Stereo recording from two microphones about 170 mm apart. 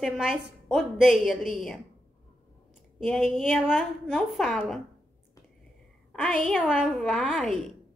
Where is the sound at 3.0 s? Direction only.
Centre (ahead or behind).